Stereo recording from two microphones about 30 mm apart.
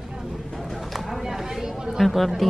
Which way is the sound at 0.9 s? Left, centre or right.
Centre.